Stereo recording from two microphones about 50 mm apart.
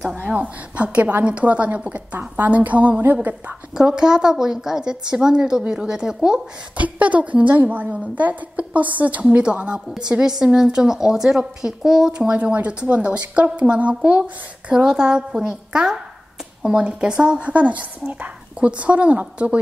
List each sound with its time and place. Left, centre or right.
0.1 s a woman's voice: right
2.1 s a woman's voice: right
2.5 s a sound: right
3.7 s a woman's voice: centre
6.8 s a woman's voice: right